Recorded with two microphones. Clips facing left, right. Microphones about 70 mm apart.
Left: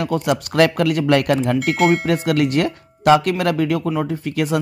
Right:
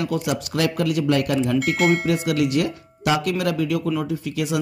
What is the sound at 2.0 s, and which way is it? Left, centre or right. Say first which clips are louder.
Speech: left 3 dB; left.